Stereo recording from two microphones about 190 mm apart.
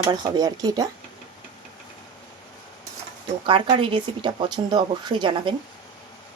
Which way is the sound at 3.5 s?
25° right (ahead or behind).